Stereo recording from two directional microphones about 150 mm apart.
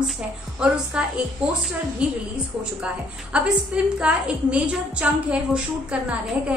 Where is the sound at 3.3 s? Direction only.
5° right (ahead or behind).